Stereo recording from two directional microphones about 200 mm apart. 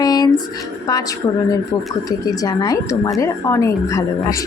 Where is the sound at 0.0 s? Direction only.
20° left (ahead or behind).